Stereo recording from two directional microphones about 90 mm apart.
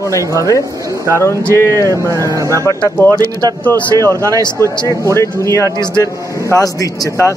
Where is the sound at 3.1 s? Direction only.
40° right (ahead or behind).